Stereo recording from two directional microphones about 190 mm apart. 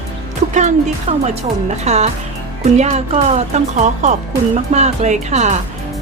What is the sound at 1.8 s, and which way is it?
Speech, 35° right (ahead or behind).